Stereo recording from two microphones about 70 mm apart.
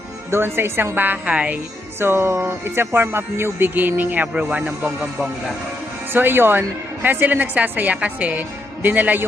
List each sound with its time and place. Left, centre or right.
0.3 s a woman's voice: right; by 1.5 s centre
2.0 s speech: right; by 5.0 s centre
6.1 s a woman's voice: right